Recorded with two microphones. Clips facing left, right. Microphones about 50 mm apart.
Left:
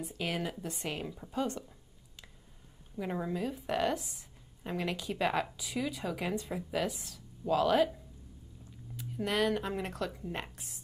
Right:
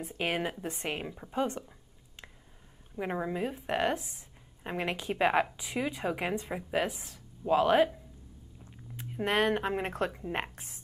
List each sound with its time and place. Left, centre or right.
0.0 s a woman's voice: right
3.0 s a woman's voice: right
8.9 s speech: right